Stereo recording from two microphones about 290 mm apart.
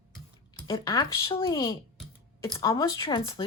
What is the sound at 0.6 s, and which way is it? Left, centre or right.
Speech, centre.